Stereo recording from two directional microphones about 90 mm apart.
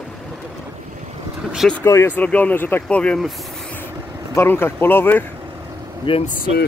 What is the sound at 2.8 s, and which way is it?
Speech, 10° left (ahead or behind).